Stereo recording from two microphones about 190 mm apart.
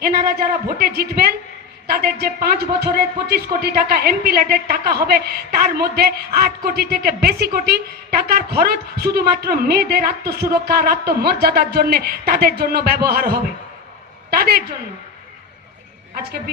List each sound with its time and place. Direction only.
0.0 s a woman's voice: 50° right (ahead or behind)